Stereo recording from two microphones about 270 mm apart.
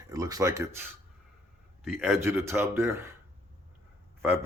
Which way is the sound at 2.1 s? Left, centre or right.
Centre.